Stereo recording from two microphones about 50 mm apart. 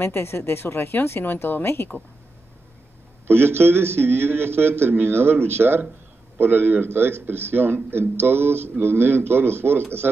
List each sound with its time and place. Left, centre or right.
0.0 s speech: left
3.3 s a man's voice: right